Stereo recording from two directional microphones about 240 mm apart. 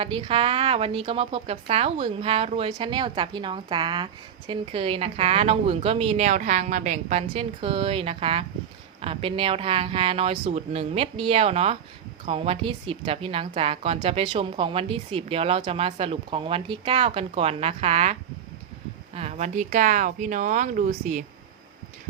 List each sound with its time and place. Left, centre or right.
0.0 s a woman's voice: right